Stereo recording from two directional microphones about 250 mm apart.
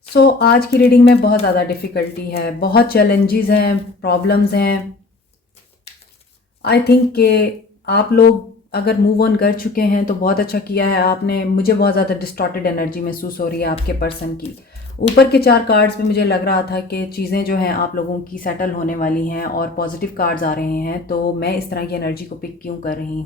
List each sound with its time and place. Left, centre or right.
0.1 s speech: left
6.7 s speech: left